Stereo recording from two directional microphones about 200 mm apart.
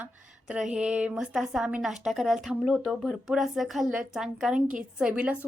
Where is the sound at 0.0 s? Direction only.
5° right (ahead or behind).